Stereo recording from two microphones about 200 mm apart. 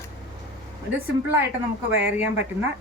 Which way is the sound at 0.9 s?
10° right (ahead or behind).